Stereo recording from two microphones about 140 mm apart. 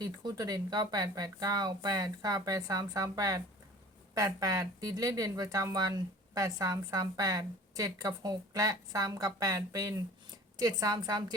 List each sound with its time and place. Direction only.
0.0 s a woman's voice: 30° right (ahead or behind)